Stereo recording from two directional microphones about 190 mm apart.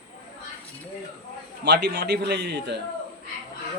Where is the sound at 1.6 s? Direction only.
60° right (ahead or behind).